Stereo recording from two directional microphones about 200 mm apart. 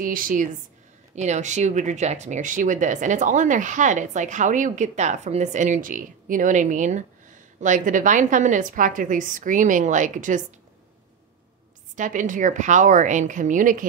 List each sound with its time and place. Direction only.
0.0 s a woman's voice: 45° right (ahead or behind)
11.9 s speech: 40° right (ahead or behind)